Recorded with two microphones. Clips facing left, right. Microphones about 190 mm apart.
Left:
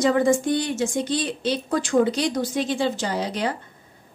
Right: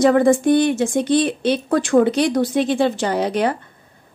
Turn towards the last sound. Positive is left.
turn(degrees=-60)  # may be behind; listen again after turning